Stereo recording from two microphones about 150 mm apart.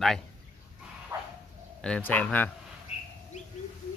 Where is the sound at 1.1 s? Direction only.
20° right (ahead or behind).